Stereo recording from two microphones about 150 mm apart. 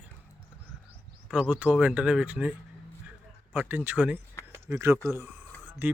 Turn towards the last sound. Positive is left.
turn(degrees=-10)  # may be behind; listen again after turning